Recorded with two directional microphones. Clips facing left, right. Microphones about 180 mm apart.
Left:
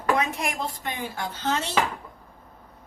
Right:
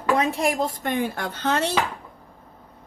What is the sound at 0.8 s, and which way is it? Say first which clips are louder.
Speech: right 6 dB; 55° right (ahead or behind).